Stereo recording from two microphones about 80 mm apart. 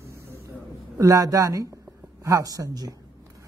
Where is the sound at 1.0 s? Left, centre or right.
Right.